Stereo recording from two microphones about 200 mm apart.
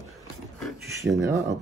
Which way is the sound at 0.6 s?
Centre (ahead or behind).